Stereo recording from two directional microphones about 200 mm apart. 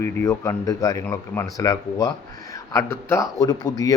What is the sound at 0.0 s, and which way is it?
Speech, 15° left (ahead or behind).